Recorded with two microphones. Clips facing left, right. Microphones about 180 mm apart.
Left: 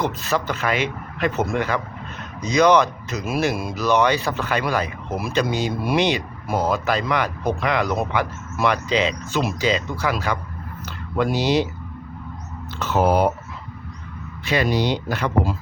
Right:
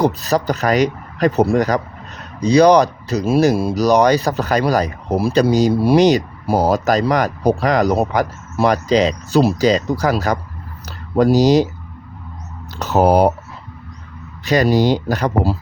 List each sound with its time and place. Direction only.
0.0 s speech: 35° right (ahead or behind)
12.8 s speech: 40° right (ahead or behind)
14.4 s speech: 40° right (ahead or behind)